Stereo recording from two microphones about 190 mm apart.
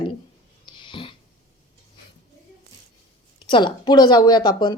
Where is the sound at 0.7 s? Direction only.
25° left (ahead or behind).